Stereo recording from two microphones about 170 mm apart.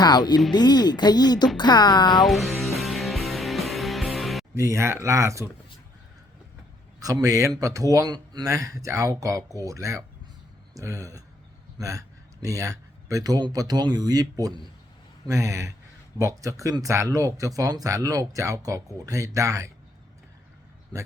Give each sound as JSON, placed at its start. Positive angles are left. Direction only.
{"t": 0.0, "sound": "speech", "side_deg": 25}
{"t": 2.2, "sound": "music", "side_deg": 0}
{"t": 4.5, "sound": "speech", "side_deg": -15}
{"t": 7.0, "sound": "a man's voice", "side_deg": -20}